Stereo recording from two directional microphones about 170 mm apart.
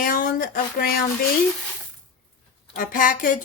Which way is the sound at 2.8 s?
55° left (ahead or behind).